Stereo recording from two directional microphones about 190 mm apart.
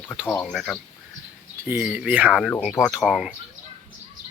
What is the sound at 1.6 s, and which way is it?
Speech, 10° right (ahead or behind).